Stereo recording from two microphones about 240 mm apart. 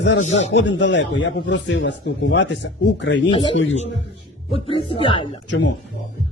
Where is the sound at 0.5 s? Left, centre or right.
Left.